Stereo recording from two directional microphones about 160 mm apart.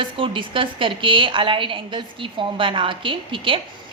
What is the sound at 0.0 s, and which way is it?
A woman's voice, 30° right (ahead or behind).